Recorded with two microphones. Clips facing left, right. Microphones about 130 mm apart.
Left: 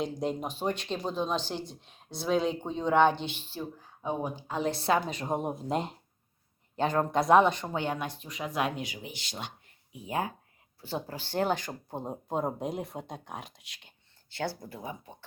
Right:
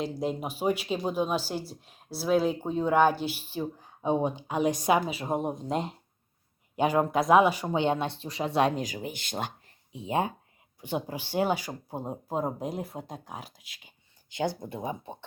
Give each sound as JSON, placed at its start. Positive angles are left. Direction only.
{"t": 0.0, "sound": "speech", "side_deg": 0}
{"t": 3.6, "sound": "speech", "side_deg": -15}
{"t": 6.7, "sound": "speech", "side_deg": -10}
{"t": 7.8, "sound": "speech", "side_deg": -25}
{"t": 9.6, "sound": "a sound", "side_deg": -25}
{"t": 10.8, "sound": "speech", "side_deg": -15}
{"t": 14.3, "sound": "speech", "side_deg": -15}